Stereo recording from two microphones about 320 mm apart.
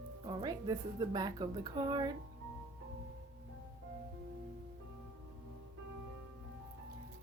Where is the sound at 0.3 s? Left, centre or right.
Centre.